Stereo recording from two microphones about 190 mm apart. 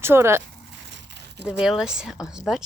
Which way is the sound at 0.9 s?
65° right (ahead or behind).